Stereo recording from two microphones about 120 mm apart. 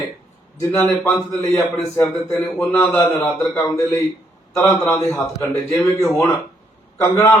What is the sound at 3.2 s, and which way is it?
A man's voice, 25° left (ahead or behind).